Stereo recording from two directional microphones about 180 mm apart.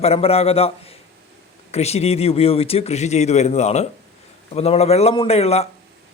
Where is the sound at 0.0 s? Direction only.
35° left (ahead or behind).